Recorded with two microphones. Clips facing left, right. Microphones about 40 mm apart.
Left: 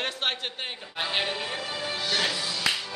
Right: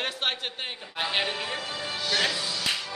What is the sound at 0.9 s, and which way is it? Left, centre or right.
Speech, centre.